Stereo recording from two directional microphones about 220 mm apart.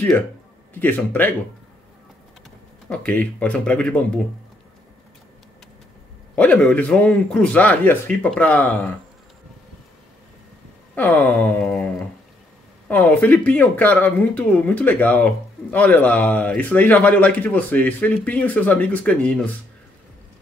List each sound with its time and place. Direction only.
0.7 s speech: 10° left (ahead or behind)
2.9 s speech: 5° left (ahead or behind)
6.3 s speech: 5° left (ahead or behind)
11.0 s a sound: 5° left (ahead or behind)
12.8 s speech: 5° left (ahead or behind)